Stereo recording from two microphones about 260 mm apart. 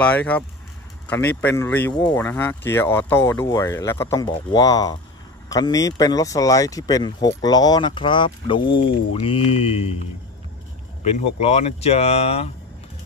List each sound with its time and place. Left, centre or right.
0.0 s speech: centre; by 9.9 s left
11.1 s speech: left